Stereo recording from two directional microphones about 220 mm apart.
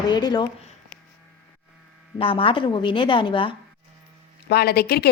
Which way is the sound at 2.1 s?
25° left (ahead or behind).